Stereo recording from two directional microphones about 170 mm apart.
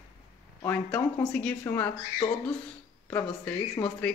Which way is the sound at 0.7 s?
5° left (ahead or behind).